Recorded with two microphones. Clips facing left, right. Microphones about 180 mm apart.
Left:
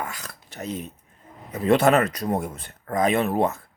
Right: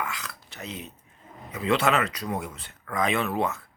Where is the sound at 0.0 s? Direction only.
40° left (ahead or behind).